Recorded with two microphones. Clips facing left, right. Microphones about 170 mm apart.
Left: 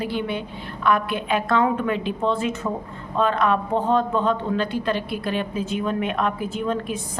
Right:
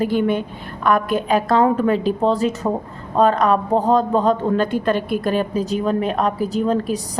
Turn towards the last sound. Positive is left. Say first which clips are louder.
# right 6 dB
turn(degrees=-35)  # may be behind; listen again after turning